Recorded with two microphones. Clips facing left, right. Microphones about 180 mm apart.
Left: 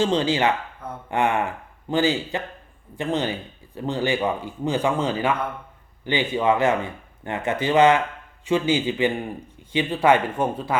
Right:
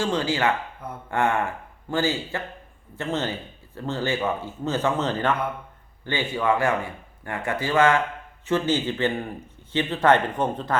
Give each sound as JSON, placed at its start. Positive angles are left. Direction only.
{"t": 0.0, "sound": "speech", "side_deg": 20}